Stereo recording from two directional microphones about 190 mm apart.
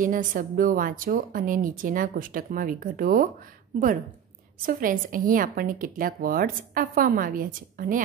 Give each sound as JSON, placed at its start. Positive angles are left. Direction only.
{"t": 0.0, "sound": "a woman's voice", "side_deg": -45}
{"t": 4.6, "sound": "a woman's voice", "side_deg": -45}